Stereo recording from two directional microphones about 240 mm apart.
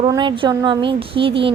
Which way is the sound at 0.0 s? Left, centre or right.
Centre.